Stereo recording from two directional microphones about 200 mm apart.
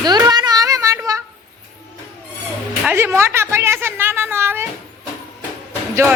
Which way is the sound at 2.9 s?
10° right (ahead or behind).